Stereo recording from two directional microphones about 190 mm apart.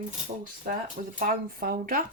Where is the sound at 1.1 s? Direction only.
45° right (ahead or behind).